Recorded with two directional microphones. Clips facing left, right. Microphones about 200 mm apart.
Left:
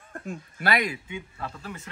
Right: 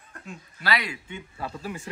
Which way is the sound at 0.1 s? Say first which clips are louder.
Left 6 dB; 50° left (ahead or behind).